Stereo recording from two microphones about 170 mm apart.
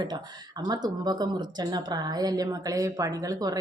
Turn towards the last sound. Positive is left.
turn(degrees=-20)  # may be behind; listen again after turning